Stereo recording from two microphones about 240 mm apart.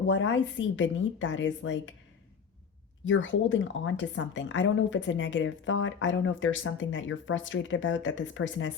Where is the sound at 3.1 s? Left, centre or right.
Left.